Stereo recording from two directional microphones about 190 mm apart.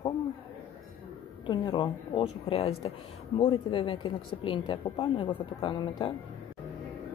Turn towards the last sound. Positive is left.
turn(degrees=25)  # may be behind; listen again after turning